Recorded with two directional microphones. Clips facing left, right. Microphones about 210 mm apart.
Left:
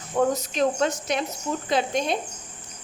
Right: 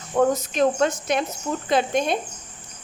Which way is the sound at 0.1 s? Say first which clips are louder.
Right 3 dB; 55° right (ahead or behind).